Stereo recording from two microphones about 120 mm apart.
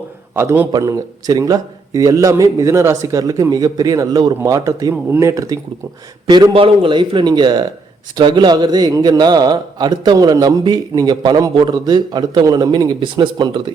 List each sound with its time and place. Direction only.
0.3 s a man's voice: 15° right (ahead or behind)
0.7 s a man's voice: 30° right (ahead or behind)